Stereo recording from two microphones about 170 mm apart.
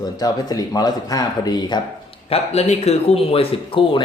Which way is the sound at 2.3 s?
40° left (ahead or behind).